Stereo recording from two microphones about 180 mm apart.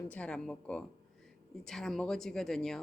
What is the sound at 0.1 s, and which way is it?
Speech, 5° left (ahead or behind).